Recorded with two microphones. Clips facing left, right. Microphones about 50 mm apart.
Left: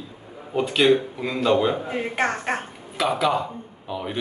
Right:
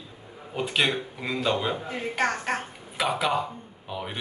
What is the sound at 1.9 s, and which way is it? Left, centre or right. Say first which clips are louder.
Speech: left 3 dB; left.